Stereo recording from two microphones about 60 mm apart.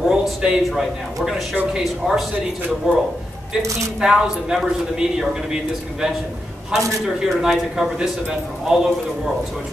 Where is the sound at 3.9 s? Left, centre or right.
Centre.